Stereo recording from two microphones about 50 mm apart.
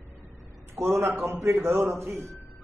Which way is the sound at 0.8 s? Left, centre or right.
Right.